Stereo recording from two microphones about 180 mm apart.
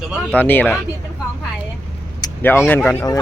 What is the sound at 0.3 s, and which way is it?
Speech, 10° left (ahead or behind).